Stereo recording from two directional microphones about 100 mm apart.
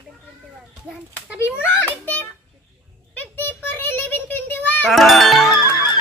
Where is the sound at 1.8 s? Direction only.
15° left (ahead or behind).